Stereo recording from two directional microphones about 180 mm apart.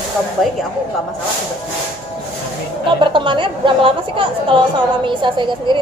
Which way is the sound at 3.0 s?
25° right (ahead or behind).